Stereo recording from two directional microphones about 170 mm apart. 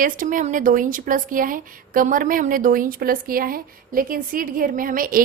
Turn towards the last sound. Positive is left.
turn(degrees=-55)  # may be behind; listen again after turning